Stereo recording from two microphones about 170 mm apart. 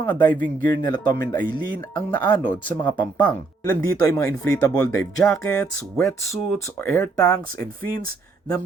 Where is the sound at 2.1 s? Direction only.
25° left (ahead or behind).